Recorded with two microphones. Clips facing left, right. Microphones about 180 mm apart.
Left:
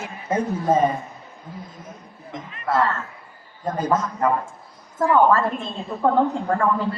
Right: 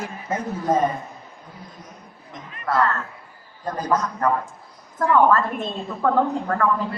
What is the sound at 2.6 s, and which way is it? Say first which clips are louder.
A man's voice: even; 25° left (ahead or behind).